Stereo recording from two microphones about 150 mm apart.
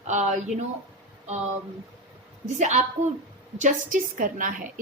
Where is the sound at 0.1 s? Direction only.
55° right (ahead or behind).